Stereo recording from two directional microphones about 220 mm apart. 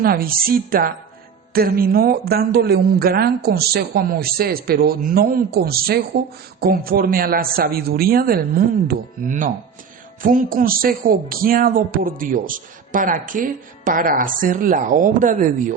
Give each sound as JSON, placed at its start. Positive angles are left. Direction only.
{"t": 0.0, "sound": "speech", "side_deg": -40}